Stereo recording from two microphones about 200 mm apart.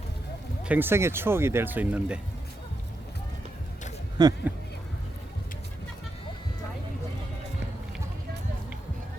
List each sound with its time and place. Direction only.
0.6 s speech: 10° right (ahead or behind)
4.2 s speech: 20° right (ahead or behind)